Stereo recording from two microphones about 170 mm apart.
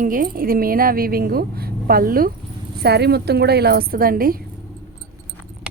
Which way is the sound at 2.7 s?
70° right (ahead or behind).